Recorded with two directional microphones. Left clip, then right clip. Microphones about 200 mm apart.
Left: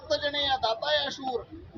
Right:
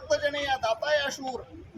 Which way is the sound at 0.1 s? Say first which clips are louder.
Even; 15° right (ahead or behind).